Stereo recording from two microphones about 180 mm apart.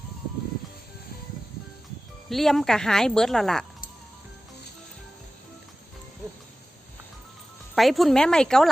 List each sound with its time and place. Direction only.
2.3 s speech: centre (ahead or behind)
7.8 s speech: centre (ahead or behind)